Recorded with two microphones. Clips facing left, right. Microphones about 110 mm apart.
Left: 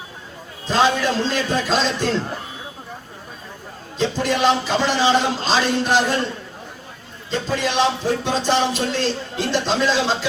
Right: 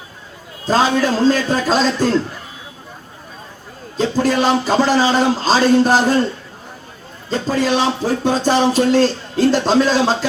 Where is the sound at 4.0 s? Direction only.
40° right (ahead or behind).